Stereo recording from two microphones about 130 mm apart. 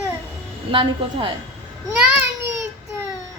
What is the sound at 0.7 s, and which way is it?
Speech, 40° right (ahead or behind).